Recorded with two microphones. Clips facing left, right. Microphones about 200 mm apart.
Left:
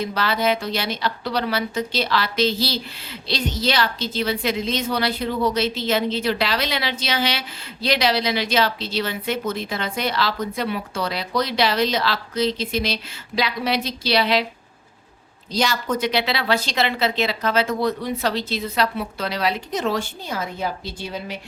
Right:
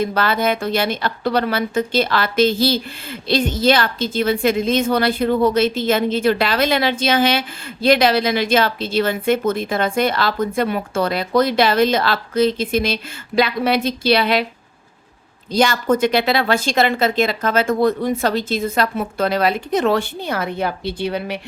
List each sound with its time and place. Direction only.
0.0 s speech: 50° right (ahead or behind)
15.5 s speech: 50° right (ahead or behind)